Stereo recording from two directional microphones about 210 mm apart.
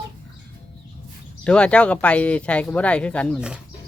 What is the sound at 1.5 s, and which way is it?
Speech, 5° left (ahead or behind).